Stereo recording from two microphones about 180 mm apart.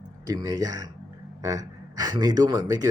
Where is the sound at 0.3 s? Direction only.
20° right (ahead or behind).